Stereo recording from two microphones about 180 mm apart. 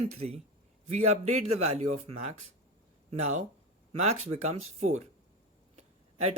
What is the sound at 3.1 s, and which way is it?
Speech, 40° right (ahead or behind).